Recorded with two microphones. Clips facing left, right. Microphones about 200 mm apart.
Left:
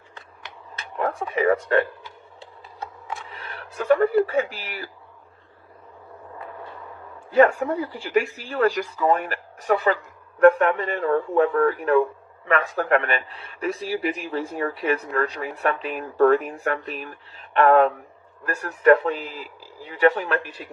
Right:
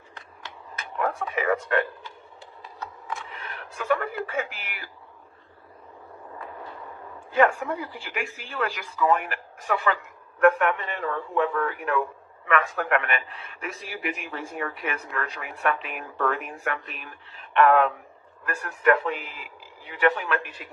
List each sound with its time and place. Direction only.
0.8 s a sound: 30° left (ahead or behind)
3.8 s speech: 40° left (ahead or behind)
7.3 s speech: 40° left (ahead or behind)